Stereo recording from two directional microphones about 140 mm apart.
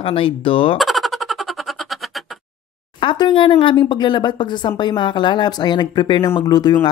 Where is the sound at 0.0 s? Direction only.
40° left (ahead or behind).